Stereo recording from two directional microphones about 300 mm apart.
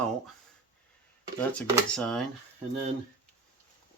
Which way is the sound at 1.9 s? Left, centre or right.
Centre.